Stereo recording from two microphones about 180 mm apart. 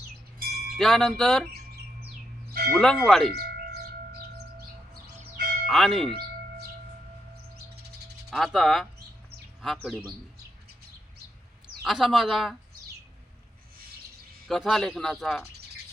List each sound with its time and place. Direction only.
0.8 s speech: centre (ahead or behind)
2.5 s a sound: 60° right (ahead or behind)
2.7 s speech: centre (ahead or behind)
3.3 s bird: 65° right (ahead or behind)
5.0 s a sound: 55° right (ahead or behind)
5.6 s speech: centre (ahead or behind)
7.5 s bird: 65° right (ahead or behind)
8.3 s speech: centre (ahead or behind)
11.8 s speech: centre (ahead or behind)
14.4 s speech: centre (ahead or behind)